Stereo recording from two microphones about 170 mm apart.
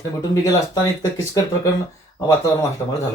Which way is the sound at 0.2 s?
20° left (ahead or behind).